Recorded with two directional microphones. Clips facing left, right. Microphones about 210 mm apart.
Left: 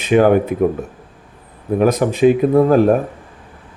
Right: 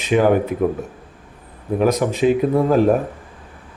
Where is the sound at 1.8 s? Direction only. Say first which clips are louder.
Left 3 dB; 55° left (ahead or behind).